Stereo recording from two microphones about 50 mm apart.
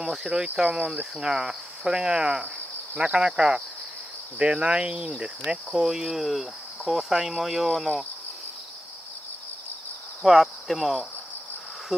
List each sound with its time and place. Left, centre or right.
0.0 s cricket: centre
10.2 s cricket: centre